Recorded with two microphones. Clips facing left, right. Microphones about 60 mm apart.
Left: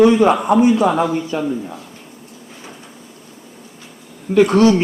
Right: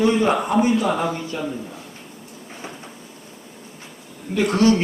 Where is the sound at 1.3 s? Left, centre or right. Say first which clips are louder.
Left 6 dB; left.